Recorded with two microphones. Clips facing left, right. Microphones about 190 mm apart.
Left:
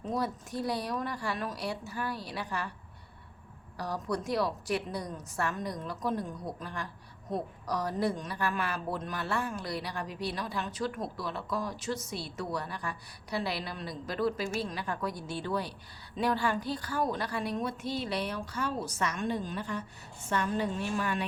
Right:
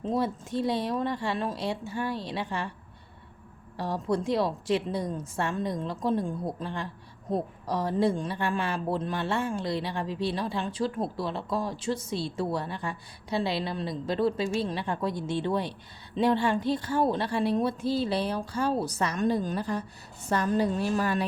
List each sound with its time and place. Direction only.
0.0 s a woman's voice: 25° right (ahead or behind)
3.8 s a woman's voice: 25° right (ahead or behind)